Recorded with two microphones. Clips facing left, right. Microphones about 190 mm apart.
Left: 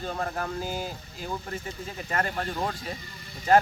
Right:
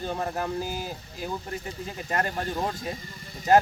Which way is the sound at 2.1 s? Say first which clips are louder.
Right 1 dB; 20° right (ahead or behind).